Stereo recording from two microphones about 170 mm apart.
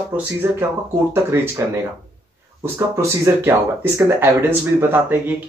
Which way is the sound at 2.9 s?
15° right (ahead or behind).